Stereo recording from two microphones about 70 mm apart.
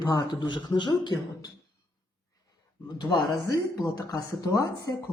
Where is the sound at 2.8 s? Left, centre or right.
Left.